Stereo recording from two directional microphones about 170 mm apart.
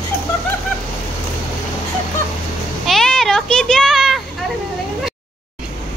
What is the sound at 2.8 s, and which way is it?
Children playing, centre (ahead or behind).